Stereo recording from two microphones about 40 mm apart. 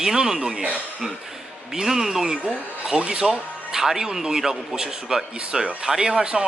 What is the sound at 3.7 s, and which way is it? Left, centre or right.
Speech, centre.